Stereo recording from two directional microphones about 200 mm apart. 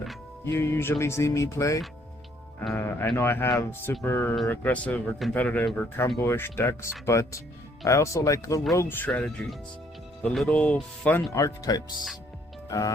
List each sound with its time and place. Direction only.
0.4 s speech: 10° left (ahead or behind)